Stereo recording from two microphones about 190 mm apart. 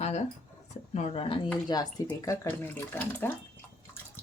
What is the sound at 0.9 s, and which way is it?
Speech, 35° left (ahead or behind).